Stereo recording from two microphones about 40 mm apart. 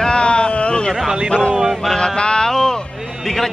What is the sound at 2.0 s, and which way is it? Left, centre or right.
Music, left.